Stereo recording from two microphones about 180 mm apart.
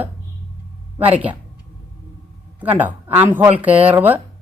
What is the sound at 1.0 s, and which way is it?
Speech, 10° right (ahead or behind).